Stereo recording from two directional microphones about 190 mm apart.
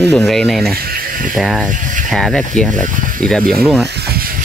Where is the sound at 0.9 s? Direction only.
45° right (ahead or behind).